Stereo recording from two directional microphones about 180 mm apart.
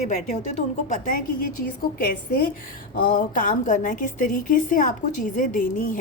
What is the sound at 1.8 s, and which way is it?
A woman's voice, 55° left (ahead or behind).